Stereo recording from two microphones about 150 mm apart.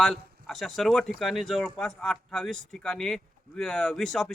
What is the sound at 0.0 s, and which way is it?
Speech, centre (ahead or behind).